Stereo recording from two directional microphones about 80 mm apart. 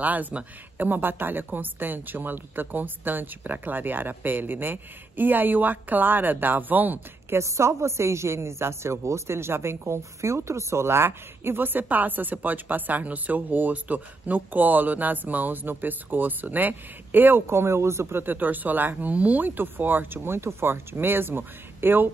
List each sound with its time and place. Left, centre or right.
0.0 s a woman's voice: centre
7.3 s a woman's voice: right